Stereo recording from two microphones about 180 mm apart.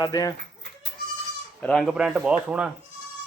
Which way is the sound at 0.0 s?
20° left (ahead or behind).